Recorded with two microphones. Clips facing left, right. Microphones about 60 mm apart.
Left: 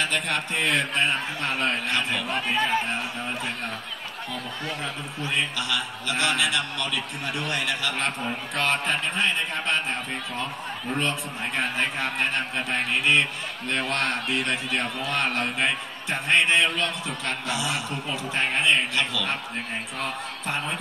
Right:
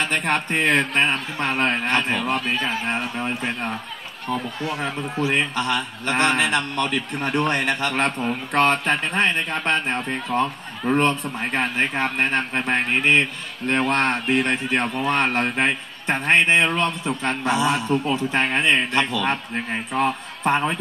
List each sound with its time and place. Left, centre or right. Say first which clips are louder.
0.0 s a man's voice: right 4 dB; right
5.3 s a man's voice: right 3 dB; right
11.0 s a man's voice: right 6 dB; right